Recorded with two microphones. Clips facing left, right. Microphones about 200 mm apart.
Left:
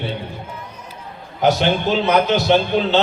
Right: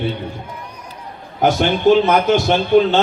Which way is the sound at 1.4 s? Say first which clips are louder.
Right 1 dB; 50° right (ahead or behind).